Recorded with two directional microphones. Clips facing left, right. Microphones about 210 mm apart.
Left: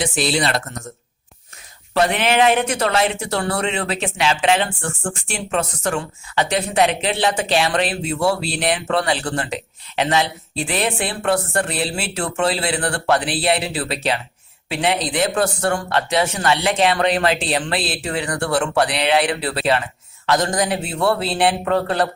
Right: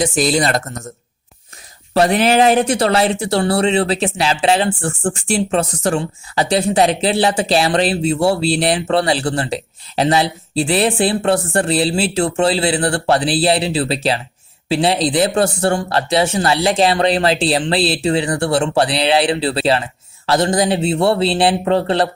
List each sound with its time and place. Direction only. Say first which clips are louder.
0.0 s speech: right 4 dB; 45° right (ahead or behind)
1.9 s speech: right 5 dB; 35° right (ahead or behind)